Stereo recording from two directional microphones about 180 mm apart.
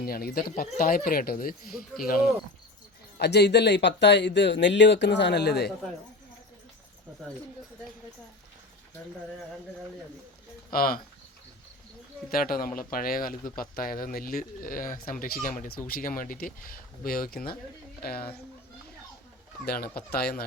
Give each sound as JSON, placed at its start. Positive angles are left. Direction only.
{"t": 0.0, "sound": "speech", "side_deg": 55}
{"t": 3.2, "sound": "speech", "side_deg": 70}
{"t": 10.7, "sound": "speech", "side_deg": 55}
{"t": 12.3, "sound": "speech", "side_deg": 55}
{"t": 19.6, "sound": "speech", "side_deg": 55}